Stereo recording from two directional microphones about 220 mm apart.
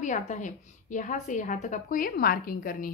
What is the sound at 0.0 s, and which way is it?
A woman's voice, 35° left (ahead or behind).